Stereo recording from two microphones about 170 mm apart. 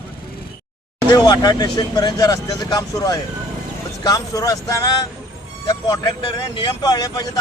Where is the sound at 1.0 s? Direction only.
25° left (ahead or behind).